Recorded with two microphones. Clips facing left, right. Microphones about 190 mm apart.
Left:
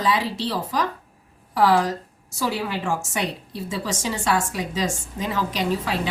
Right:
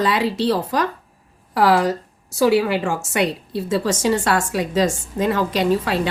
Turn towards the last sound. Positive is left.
turn(degrees=-65)  # may be behind; listen again after turning